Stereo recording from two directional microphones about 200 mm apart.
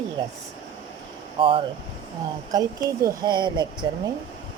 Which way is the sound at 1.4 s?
25° right (ahead or behind).